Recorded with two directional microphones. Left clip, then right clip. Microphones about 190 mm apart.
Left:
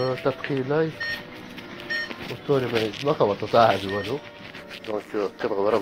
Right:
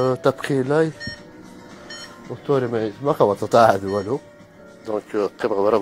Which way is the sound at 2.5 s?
40° right (ahead or behind).